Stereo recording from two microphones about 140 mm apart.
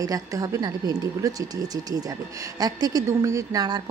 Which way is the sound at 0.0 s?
25° right (ahead or behind).